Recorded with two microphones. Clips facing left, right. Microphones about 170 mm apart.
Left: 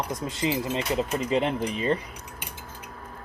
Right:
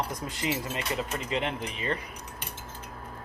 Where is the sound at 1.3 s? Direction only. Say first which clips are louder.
Left 6 dB; 35° left (ahead or behind).